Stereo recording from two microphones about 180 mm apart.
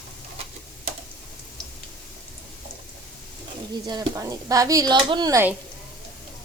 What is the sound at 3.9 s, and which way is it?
Speech, 20° right (ahead or behind).